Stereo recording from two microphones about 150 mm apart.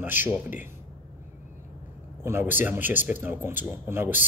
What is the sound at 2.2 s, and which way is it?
Speech, 15° right (ahead or behind).